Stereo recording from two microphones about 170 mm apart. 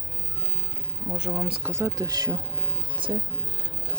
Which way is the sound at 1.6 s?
15° right (ahead or behind).